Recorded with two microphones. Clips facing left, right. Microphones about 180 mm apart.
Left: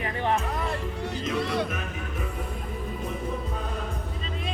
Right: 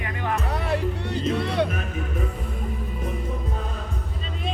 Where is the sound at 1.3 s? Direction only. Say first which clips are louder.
Right 2 dB; 65° right (ahead or behind).